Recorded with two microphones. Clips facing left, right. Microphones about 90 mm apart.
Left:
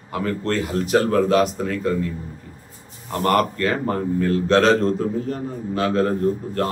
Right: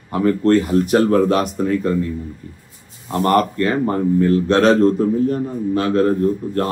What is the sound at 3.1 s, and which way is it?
A man's voice, 30° right (ahead or behind).